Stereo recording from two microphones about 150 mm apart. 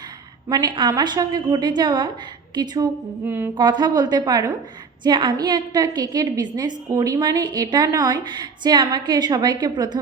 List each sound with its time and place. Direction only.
0.4 s a woman's voice: 25° right (ahead or behind)
3.2 s music: 15° right (ahead or behind)
3.5 s a woman's voice: 30° right (ahead or behind)